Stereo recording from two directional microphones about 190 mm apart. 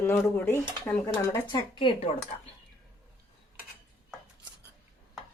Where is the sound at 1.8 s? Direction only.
30° left (ahead or behind).